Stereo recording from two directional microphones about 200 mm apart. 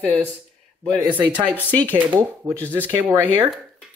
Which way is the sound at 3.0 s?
15° right (ahead or behind).